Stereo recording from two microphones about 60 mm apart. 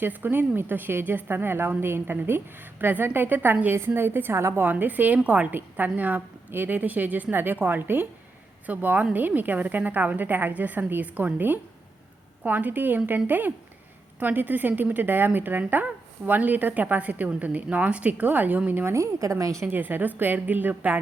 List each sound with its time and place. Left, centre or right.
0.0 s a woman's voice: right
18.9 s a woman's voice: right
19.7 s a woman's voice: right